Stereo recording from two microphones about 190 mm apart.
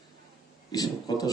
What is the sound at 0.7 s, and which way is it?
Speech, 20° left (ahead or behind).